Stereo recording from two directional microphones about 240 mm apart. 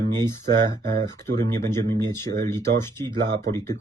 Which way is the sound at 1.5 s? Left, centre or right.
Centre.